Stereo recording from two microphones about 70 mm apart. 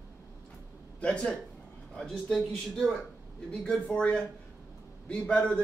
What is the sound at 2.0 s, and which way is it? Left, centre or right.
Speech, centre.